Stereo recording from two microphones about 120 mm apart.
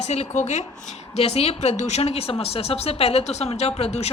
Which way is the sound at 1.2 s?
60° left (ahead or behind).